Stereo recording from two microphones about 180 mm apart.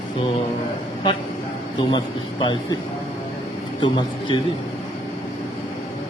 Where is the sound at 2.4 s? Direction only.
25° left (ahead or behind).